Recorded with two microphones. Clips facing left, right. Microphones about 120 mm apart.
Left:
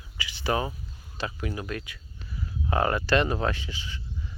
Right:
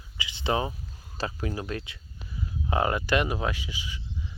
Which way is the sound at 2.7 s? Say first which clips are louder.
Left 1 dB; 20° right (ahead or behind).